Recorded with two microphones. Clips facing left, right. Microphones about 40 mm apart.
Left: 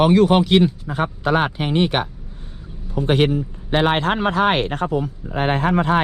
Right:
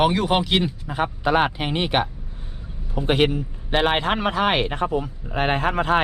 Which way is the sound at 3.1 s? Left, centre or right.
Centre.